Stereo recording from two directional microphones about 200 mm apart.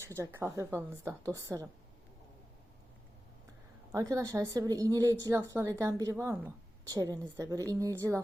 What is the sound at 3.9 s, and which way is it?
A woman's voice, 15° right (ahead or behind).